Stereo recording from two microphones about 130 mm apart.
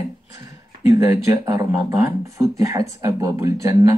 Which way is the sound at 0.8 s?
25° right (ahead or behind).